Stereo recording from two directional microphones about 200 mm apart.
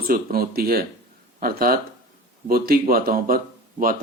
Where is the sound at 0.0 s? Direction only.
50° right (ahead or behind).